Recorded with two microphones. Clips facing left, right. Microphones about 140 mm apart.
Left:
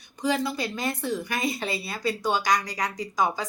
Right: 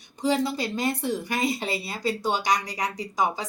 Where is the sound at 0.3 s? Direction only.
30° right (ahead or behind).